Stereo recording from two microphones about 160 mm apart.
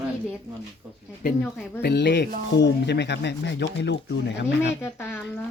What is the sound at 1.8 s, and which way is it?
Speech, 90° left.